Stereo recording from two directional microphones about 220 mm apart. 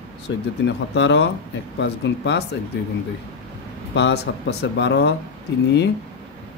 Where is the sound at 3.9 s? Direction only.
50° left (ahead or behind).